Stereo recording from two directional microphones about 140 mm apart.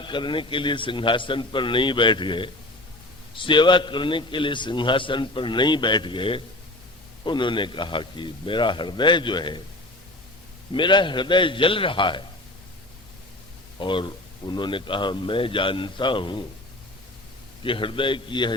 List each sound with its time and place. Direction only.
0.0 s a man's voice: 35° left (ahead or behind)
10.7 s a man's voice: 35° left (ahead or behind)
13.7 s a man's voice: 35° left (ahead or behind)
17.6 s a man's voice: 35° left (ahead or behind)